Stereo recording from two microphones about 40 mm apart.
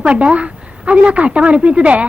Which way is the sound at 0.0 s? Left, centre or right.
Right.